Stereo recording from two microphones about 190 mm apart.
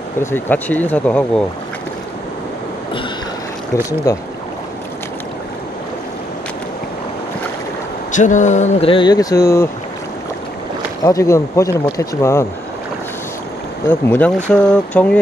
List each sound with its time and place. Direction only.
0.2 s speech: 10° left (ahead or behind)
3.7 s speech: 15° left (ahead or behind)
8.1 s speech: 40° left (ahead or behind); by 9.7 s 15° left (ahead or behind)
11.1 s speech: 15° left (ahead or behind)
13.8 s speech: 10° left (ahead or behind)